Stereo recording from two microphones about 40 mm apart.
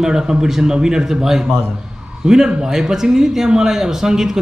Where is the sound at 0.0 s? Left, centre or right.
Centre.